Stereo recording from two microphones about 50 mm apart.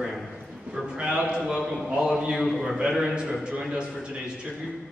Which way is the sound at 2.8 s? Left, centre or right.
Centre.